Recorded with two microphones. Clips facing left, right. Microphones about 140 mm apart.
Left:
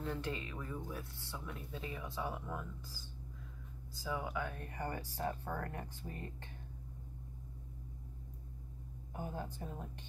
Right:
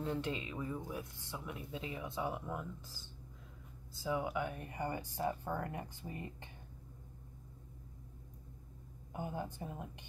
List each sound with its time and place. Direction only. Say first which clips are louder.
0.0 s speech: right 2 dB; 20° right (ahead or behind)
9.1 s speech: right 2 dB; 15° right (ahead or behind)